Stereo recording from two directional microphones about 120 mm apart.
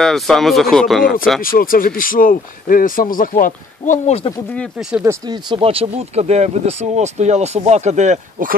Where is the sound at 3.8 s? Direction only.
80° left.